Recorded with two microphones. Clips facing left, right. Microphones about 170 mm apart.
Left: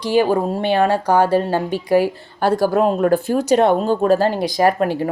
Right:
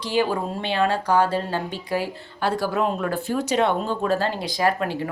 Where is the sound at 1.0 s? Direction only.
50° left (ahead or behind).